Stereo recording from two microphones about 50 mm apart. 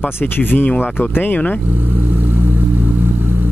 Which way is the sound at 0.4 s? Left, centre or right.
Left.